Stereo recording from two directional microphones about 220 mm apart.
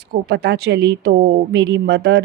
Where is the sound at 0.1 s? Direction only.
45° right (ahead or behind).